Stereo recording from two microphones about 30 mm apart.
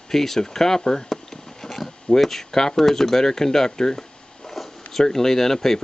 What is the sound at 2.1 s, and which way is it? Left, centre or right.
Speech, centre.